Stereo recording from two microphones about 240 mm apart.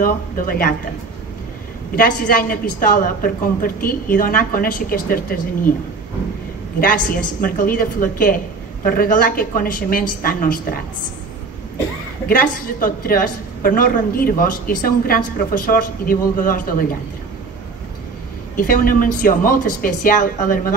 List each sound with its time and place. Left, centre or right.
0.0 s a woman's voice: left
2.0 s a woman's voice: left
6.8 s a woman's voice: left
12.3 s a woman's voice: left
18.6 s a woman's voice: left